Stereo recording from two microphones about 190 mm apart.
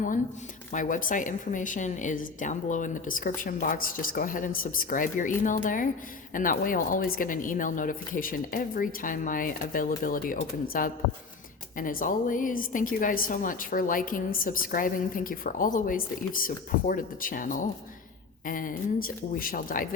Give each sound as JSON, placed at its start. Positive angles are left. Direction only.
{"t": 0.7, "sound": "a woman's voice", "side_deg": 45}